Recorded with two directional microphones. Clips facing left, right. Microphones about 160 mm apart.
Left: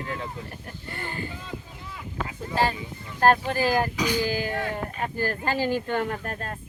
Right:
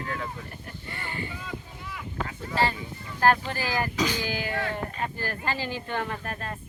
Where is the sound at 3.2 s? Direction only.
45° left (ahead or behind).